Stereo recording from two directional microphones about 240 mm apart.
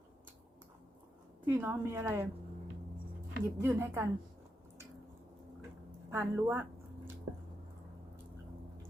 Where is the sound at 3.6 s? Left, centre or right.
Centre.